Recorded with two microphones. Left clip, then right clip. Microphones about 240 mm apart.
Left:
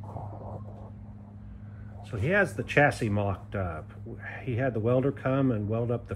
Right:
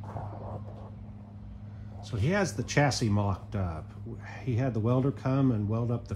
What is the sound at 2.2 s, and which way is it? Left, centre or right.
Speech, centre.